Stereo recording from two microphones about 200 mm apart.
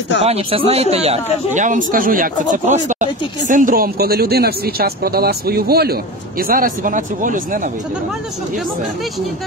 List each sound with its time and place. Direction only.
0.2 s speech: 30° right (ahead or behind)